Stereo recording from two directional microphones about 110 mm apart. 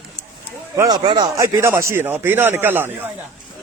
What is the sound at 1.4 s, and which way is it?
A man's voice, 30° right (ahead or behind).